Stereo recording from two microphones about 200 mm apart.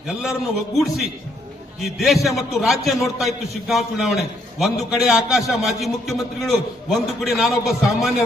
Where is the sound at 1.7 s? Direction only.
Centre (ahead or behind).